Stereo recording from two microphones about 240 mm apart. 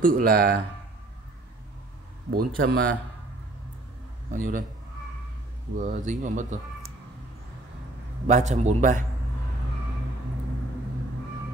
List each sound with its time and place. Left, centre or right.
0.0 s speech: right
2.3 s speech: right
4.3 s speech: right
5.8 s speech: right
8.3 s a man's voice: right